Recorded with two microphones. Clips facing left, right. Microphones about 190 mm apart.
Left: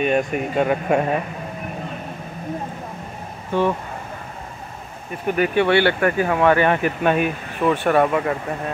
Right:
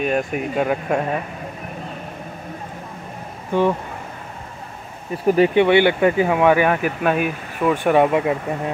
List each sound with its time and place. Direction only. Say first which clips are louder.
0.0 s speech: left 1 dB; centre (ahead or behind)
3.5 s speech: right 2 dB; 15° right (ahead or behind)
5.1 s speech: right 5 dB; 30° right (ahead or behind)
5.5 s speech: right 3 dB; 20° right (ahead or behind)